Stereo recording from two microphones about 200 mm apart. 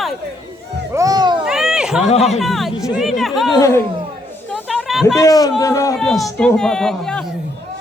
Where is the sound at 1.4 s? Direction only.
5° right (ahead or behind).